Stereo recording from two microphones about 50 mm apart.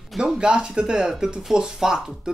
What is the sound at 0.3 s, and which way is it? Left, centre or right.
Speech, centre.